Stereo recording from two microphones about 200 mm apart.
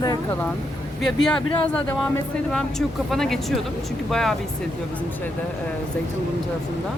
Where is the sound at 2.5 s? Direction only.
Centre (ahead or behind).